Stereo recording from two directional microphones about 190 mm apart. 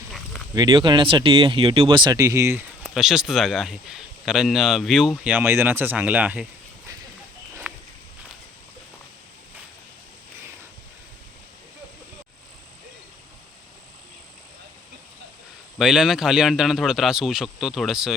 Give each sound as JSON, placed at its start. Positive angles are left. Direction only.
{"t": 0.5, "sound": "speech", "side_deg": -25}
{"t": 2.8, "sound": "speech", "side_deg": 0}
{"t": 7.6, "sound": "walk", "side_deg": -5}
{"t": 15.8, "sound": "speech", "side_deg": -5}